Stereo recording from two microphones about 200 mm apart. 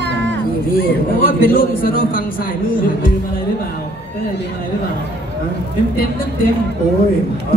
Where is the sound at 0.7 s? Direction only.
45° left (ahead or behind).